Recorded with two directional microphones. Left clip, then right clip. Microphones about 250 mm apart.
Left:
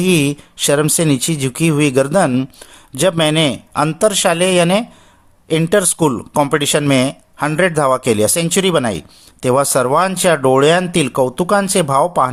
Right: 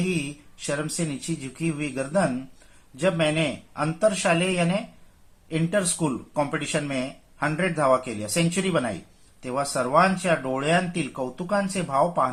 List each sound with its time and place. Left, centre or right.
0.7 s speech: left